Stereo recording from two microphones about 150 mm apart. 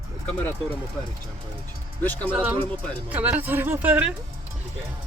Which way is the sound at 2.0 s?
10° left (ahead or behind).